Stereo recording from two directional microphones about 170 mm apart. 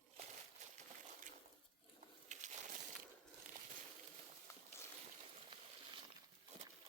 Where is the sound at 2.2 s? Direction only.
45° right (ahead or behind).